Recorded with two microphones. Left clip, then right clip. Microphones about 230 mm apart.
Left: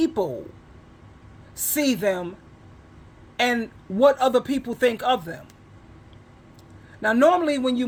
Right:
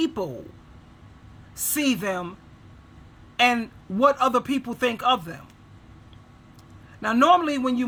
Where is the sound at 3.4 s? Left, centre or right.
Centre.